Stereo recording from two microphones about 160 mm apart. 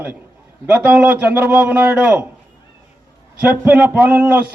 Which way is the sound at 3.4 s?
10° right (ahead or behind).